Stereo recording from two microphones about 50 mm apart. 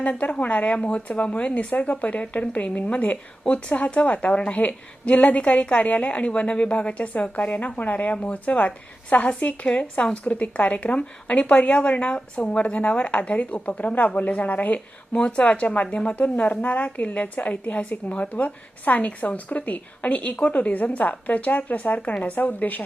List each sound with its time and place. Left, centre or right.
0.0 s a woman's voice: left